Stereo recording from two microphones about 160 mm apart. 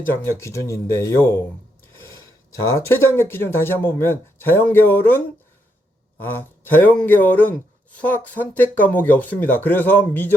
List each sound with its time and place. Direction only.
0.3 s speech: 20° left (ahead or behind)
2.7 s speech: 15° left (ahead or behind)
6.2 s speech: 10° left (ahead or behind)